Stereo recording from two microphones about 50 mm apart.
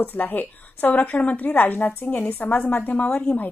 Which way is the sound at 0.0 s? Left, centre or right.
Left.